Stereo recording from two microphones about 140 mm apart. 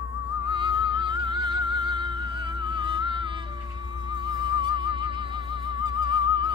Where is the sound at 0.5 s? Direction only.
35° right (ahead or behind).